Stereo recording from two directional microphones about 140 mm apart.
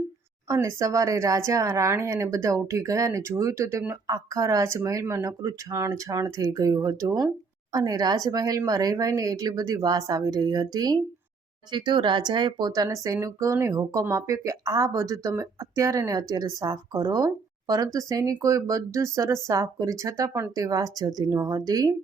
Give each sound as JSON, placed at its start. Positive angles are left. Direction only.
{"t": 0.4, "sound": "speech", "side_deg": -20}